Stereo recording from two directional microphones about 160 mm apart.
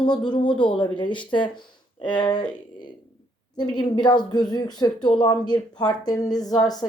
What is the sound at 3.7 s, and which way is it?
Speech, 30° left (ahead or behind).